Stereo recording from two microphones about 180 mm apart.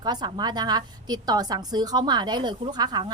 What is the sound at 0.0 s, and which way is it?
A woman's voice, 25° right (ahead or behind).